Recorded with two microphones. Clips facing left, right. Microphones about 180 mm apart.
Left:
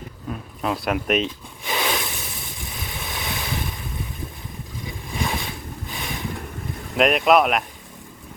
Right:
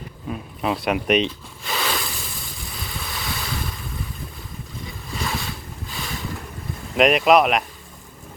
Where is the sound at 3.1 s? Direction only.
20° left (ahead or behind).